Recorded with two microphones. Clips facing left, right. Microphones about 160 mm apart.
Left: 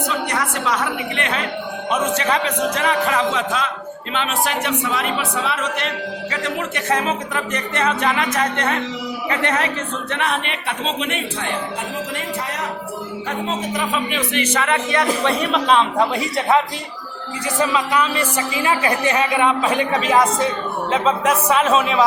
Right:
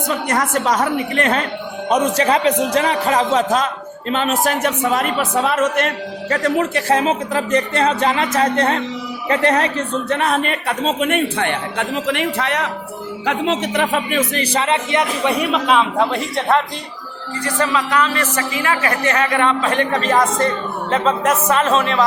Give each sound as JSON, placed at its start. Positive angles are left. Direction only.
{"t": 0.1, "sound": "speech", "side_deg": -45}
{"t": 15.2, "sound": "a man's voice", "side_deg": -15}
{"t": 17.4, "sound": "a man's voice", "side_deg": 15}